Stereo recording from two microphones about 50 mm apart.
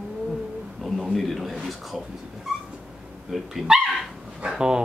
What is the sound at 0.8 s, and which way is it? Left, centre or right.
A man's voice, centre.